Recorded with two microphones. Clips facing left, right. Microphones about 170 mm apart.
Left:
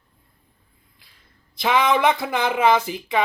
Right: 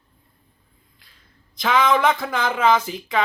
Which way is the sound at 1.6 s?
20° left (ahead or behind).